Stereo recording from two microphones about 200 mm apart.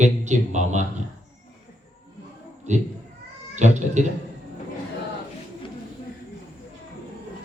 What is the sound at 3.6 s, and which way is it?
Speech, 35° right (ahead or behind).